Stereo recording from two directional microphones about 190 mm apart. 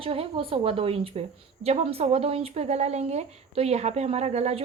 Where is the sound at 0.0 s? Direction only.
30° right (ahead or behind).